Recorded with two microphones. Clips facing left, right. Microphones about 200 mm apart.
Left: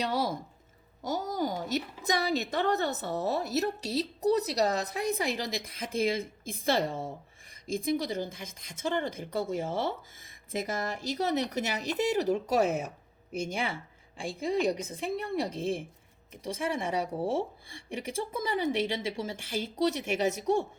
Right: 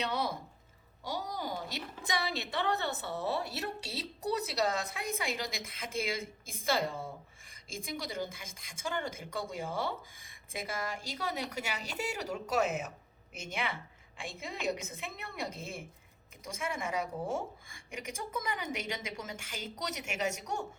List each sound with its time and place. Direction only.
0.0 s a woman's voice: 45° left (ahead or behind)
8.1 s a woman's voice: 40° left (ahead or behind)